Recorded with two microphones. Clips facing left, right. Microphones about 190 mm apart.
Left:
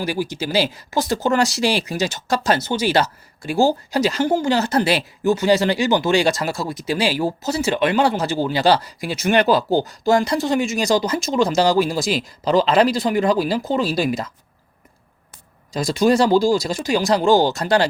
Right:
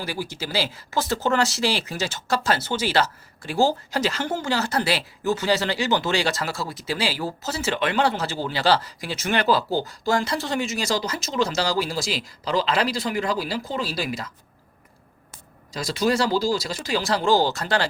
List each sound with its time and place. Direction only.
0.0 s speech: 15° left (ahead or behind)
11.3 s speech: 40° left (ahead or behind)
15.7 s speech: 50° left (ahead or behind)
16.8 s speech: 15° left (ahead or behind)